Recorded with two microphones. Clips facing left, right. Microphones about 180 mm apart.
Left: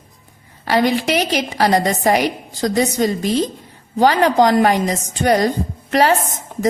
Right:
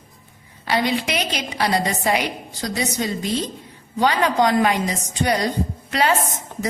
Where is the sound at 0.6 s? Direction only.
45° left (ahead or behind).